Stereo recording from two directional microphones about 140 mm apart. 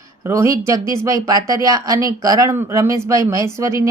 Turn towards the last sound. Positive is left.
turn(degrees=-20)  # may be behind; listen again after turning